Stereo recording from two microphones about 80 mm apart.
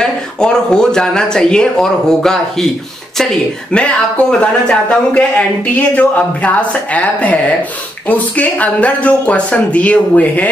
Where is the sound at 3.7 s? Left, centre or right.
Centre.